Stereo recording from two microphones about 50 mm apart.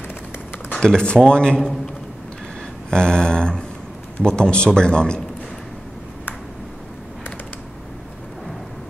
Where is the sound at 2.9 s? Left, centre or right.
Centre.